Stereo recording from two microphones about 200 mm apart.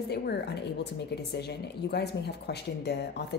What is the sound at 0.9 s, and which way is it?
A woman's voice, 60° left (ahead or behind).